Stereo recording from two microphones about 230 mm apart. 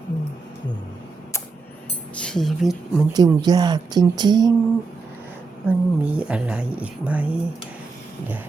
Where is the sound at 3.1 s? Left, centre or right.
Centre.